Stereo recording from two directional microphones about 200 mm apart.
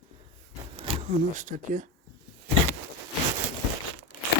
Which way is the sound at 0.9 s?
25° right (ahead or behind).